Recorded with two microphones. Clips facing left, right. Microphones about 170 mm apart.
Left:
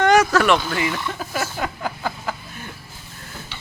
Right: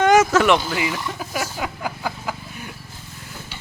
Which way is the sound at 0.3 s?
15° right (ahead or behind).